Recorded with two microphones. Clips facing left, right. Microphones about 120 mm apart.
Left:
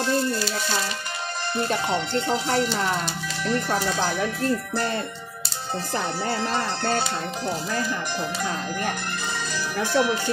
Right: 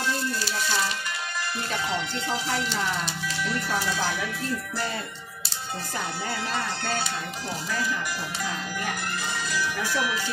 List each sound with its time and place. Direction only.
1.7 s music: 40° left (ahead or behind)
5.9 s music: 35° left (ahead or behind)
9.5 s speech: 35° left (ahead or behind)